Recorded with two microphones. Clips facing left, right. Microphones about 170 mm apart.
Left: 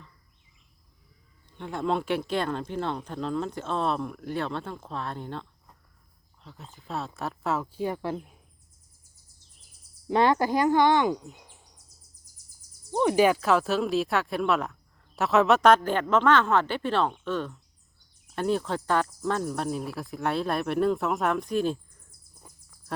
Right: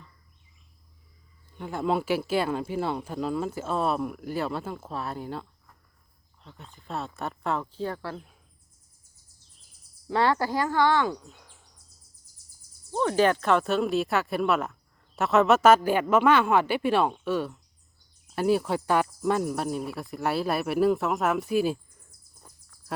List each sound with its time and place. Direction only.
1.5 s speech: 5° right (ahead or behind); by 8.3 s 15° left (ahead or behind)
10.1 s speech: 20° left (ahead or behind)
12.9 s speech: 15° left (ahead or behind); by 22.0 s 5° right (ahead or behind)
22.4 s a sound: 10° left (ahead or behind)